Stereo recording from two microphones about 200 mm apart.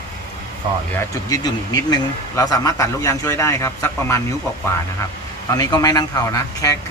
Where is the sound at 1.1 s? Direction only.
20° left (ahead or behind).